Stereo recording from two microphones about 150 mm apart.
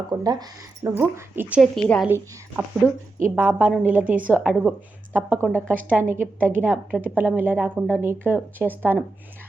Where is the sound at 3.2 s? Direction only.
10° right (ahead or behind).